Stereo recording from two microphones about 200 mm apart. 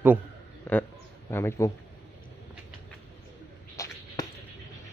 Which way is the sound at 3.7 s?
15° left (ahead or behind).